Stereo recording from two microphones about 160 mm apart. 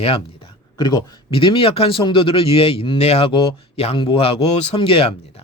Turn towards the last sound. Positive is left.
turn(degrees=35)  # may be behind; listen again after turning